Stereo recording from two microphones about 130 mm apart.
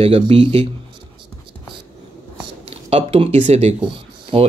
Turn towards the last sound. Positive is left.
turn(degrees=-45)  # may be behind; listen again after turning